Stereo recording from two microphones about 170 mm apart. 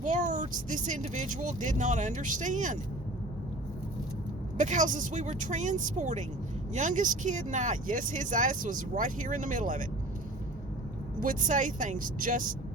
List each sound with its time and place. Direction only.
0.0 s speech: 45° right (ahead or behind)
4.5 s speech: 45° right (ahead or behind)
11.2 s speech: 50° right (ahead or behind)